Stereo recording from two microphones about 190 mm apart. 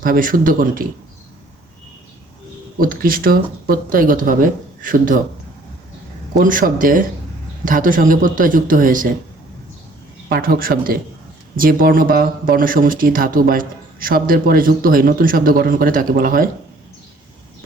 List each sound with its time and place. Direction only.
0.0 s speech: 45° right (ahead or behind)
2.7 s speech: 50° right (ahead or behind)
6.4 s speech: 45° right (ahead or behind)
10.2 s speech: 50° right (ahead or behind)